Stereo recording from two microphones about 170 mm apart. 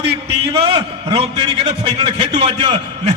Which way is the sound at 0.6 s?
30° right (ahead or behind).